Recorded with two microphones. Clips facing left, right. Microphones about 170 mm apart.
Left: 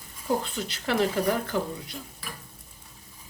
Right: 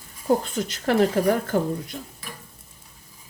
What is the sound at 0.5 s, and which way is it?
Speech, 45° right (ahead or behind).